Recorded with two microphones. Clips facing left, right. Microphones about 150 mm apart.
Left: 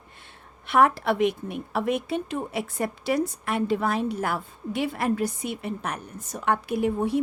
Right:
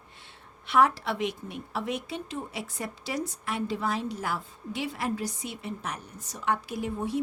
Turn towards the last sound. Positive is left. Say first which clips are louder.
# left 7 dB
turn(degrees=60)  # may be behind; listen again after turning